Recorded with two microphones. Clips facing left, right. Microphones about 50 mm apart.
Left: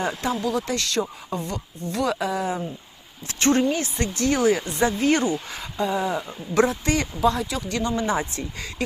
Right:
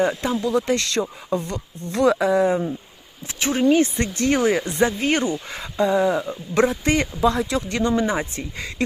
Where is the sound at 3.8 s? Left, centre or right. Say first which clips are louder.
Right 5 dB; right.